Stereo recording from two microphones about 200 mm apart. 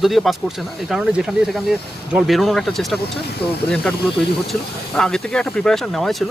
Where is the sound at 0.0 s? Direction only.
Centre (ahead or behind).